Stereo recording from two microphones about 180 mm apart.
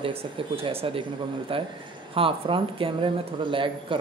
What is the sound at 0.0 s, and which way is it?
Speech, 30° right (ahead or behind).